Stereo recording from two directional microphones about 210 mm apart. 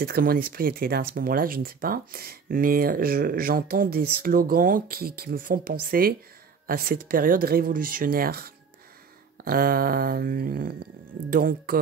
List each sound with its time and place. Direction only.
0.0 s speech: 45° right (ahead or behind)